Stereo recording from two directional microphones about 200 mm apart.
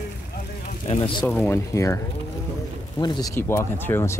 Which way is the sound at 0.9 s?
25° left (ahead or behind).